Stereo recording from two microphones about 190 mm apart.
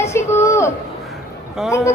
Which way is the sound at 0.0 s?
15° left (ahead or behind).